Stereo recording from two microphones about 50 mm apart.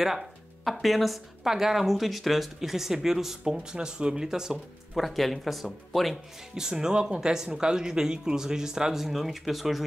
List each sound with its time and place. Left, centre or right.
0.0 s speech: centre
4.9 s speech: centre
6.5 s speech: centre